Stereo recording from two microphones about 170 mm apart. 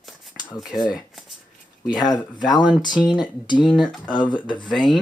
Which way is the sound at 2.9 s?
5° right (ahead or behind).